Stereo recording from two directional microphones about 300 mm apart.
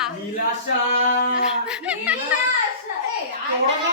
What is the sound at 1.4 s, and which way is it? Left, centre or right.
Speech, centre.